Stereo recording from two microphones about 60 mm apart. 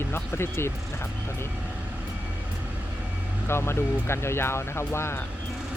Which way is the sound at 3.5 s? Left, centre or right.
Left.